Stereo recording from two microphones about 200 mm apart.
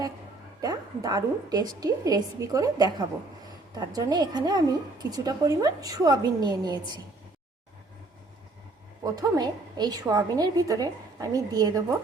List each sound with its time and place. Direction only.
0.6 s a woman's voice: 20° right (ahead or behind)
9.0 s a woman's voice: 15° right (ahead or behind)